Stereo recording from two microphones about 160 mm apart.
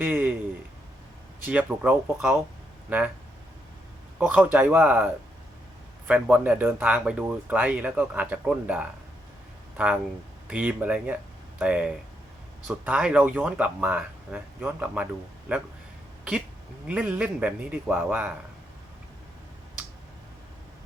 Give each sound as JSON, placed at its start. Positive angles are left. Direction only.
{"t": 0.0, "sound": "speech", "side_deg": -10}
{"t": 1.5, "sound": "speech", "side_deg": -10}
{"t": 4.5, "sound": "speech", "side_deg": -10}
{"t": 6.1, "sound": "speech", "side_deg": -10}
{"t": 16.8, "sound": "speech", "side_deg": -10}